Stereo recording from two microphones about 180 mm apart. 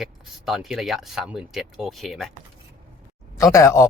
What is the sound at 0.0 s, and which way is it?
Speech, centre (ahead or behind).